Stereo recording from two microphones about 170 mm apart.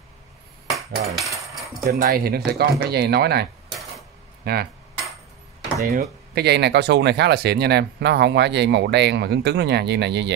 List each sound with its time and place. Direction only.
0.7 s a sound: centre (ahead or behind)
1.9 s speech: 65° right (ahead or behind)
4.4 s cutlery: 65° right (ahead or behind)
6.3 s speech: 75° right (ahead or behind)